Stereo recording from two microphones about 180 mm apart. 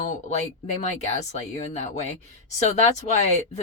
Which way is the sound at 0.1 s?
40° left (ahead or behind).